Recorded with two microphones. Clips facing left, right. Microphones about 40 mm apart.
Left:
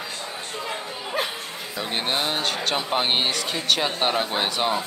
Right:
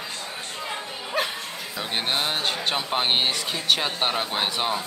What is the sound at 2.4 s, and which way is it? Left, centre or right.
Speech, centre.